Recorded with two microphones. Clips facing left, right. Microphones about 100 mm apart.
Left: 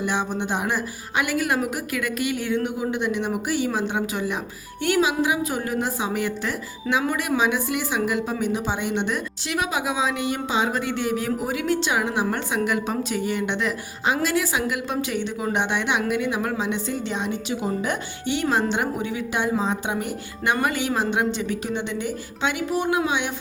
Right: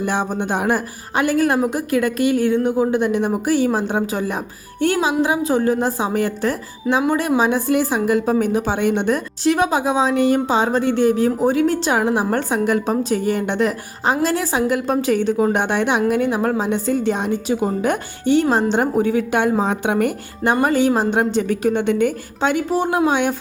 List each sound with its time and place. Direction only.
0.0 s a woman's voice: 45° right (ahead or behind)
1.2 s speech: 35° right (ahead or behind); by 20.1 s 60° right (ahead or behind)
20.4 s a woman's voice: 40° right (ahead or behind)